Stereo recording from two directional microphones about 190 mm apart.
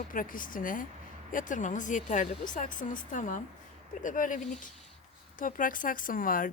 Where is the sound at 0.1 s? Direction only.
45° left (ahead or behind).